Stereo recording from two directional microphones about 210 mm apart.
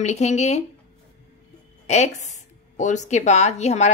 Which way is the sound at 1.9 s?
35° left (ahead or behind).